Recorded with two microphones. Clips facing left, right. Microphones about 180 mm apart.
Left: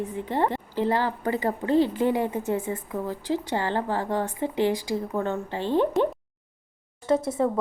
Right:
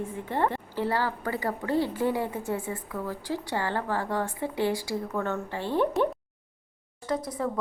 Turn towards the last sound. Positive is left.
turn(degrees=25)  # may be behind; listen again after turning